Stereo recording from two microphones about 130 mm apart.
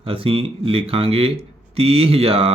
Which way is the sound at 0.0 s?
45° right (ahead or behind).